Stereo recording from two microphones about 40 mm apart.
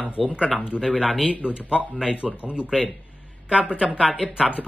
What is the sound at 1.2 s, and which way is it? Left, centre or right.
Speech, left.